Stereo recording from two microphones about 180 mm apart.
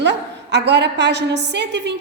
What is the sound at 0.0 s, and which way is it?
A woman's voice, 70° right (ahead or behind).